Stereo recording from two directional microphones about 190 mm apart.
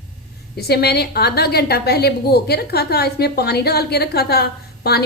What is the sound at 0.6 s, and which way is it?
A woman's voice, 55° left (ahead or behind).